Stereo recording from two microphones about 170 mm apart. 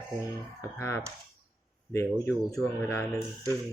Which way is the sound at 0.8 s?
15° left (ahead or behind).